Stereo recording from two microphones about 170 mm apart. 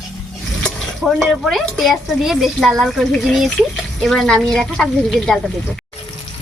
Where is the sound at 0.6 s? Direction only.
Centre (ahead or behind).